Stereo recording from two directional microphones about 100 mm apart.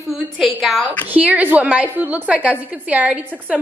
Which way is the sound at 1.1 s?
15° right (ahead or behind).